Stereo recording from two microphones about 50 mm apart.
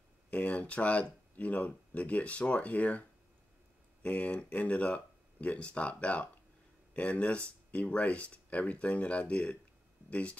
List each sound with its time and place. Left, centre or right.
0.3 s speech: left